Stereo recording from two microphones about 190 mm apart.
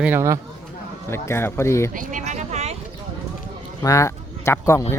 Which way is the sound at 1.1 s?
15° left (ahead or behind).